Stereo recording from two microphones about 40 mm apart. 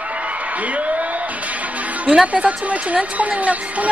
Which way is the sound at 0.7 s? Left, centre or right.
Right.